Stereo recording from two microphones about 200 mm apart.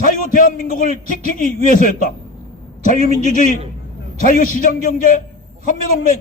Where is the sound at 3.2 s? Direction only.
40° left (ahead or behind).